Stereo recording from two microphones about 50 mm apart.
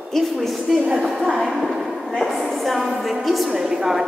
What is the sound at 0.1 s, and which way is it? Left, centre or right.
A woman's voice, centre.